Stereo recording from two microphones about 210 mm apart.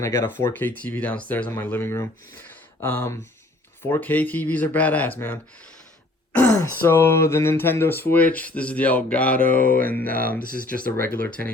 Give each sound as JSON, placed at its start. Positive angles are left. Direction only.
{"t": 0.0, "sound": "speech", "side_deg": 15}
{"t": 10.4, "sound": "speech", "side_deg": 40}
{"t": 11.2, "sound": "speech", "side_deg": 5}